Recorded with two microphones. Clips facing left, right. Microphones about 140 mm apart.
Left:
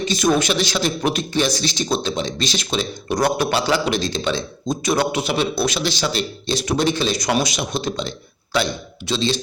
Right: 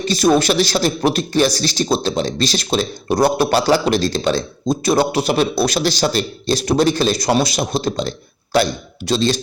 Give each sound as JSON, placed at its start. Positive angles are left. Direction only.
{"t": 0.1, "sound": "a man's voice", "side_deg": -35}